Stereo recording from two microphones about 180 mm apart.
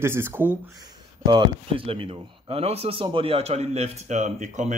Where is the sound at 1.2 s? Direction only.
25° right (ahead or behind).